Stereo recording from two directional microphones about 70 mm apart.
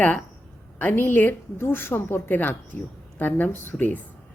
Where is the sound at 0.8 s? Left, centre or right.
Left.